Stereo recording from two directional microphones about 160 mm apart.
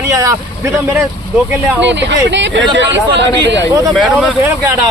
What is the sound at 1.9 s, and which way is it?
Speech, 90° right.